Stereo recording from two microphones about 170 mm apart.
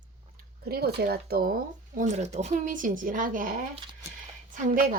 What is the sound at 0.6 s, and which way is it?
Speech, 70° right (ahead or behind).